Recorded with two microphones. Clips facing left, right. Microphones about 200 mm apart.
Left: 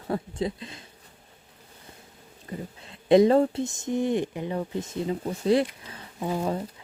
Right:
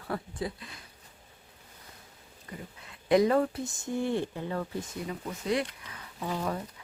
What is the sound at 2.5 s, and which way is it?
Speech, 30° left (ahead or behind).